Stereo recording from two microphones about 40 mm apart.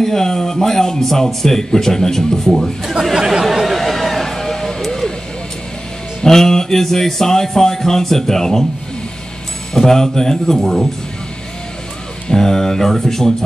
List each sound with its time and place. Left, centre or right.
0.0 s a man's voice: centre
2.8 s speech: centre
3.3 s a sound: centre
6.2 s a man's voice: centre
9.8 s a man's voice: centre
12.3 s a man's voice: centre